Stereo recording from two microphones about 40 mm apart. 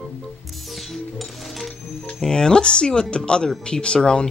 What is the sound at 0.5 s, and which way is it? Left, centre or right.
Music, centre.